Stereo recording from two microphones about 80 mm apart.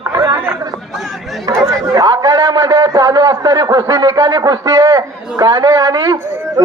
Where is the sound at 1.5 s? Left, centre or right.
Right.